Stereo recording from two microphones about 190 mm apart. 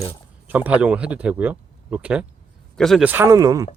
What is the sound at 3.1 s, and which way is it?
Speech, 15° right (ahead or behind).